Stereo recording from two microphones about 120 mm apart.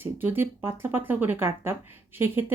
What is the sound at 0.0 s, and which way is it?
Speech, 20° right (ahead or behind).